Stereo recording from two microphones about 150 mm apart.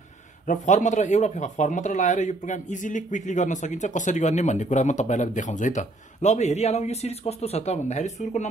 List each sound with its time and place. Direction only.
0.5 s a man's voice: 55° left (ahead or behind)